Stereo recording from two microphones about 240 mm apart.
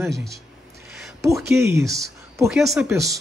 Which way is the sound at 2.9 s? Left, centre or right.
Centre.